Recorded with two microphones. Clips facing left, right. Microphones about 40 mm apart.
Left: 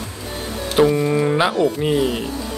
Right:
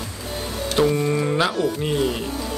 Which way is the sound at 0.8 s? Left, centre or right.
Centre.